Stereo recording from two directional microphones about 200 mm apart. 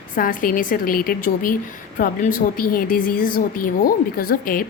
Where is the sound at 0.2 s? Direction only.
45° left (ahead or behind).